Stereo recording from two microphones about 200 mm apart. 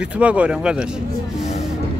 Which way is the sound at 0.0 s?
5° right (ahead or behind).